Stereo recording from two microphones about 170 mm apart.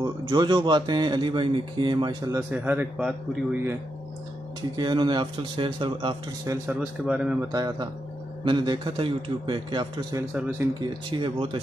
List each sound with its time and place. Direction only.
0.0 s a man's voice: 25° right (ahead or behind); by 3.7 s 5° right (ahead or behind)
4.7 s a man's voice: 25° right (ahead or behind)
6.8 s a man's voice: 5° right (ahead or behind)
7.5 s a man's voice: 20° right (ahead or behind)